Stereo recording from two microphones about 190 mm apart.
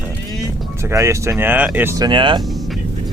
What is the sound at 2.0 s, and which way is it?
Speech, 25° right (ahead or behind).